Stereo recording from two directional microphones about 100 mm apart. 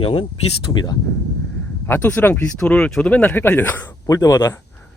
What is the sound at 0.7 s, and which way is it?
Speech, 45° left (ahead or behind).